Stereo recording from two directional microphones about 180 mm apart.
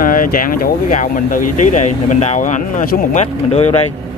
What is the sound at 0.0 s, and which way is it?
Speech, 50° left (ahead or behind).